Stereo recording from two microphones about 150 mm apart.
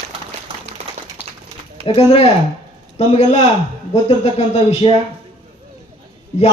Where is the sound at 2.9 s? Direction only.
45° left (ahead or behind).